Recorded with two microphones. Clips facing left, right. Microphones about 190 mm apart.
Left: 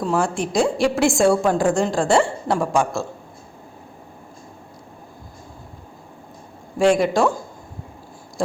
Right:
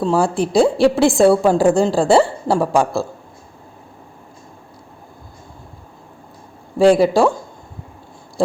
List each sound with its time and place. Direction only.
0.0 s a woman's voice: 30° right (ahead or behind)
6.7 s a woman's voice: 30° right (ahead or behind)